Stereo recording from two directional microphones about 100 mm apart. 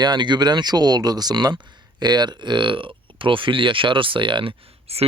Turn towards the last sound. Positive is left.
turn(degrees=-90)